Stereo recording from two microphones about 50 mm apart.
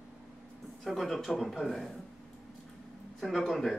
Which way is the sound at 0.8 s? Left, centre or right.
Centre.